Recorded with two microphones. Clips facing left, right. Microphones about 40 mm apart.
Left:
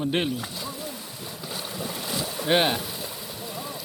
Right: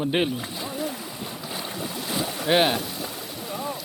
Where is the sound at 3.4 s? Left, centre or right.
Right.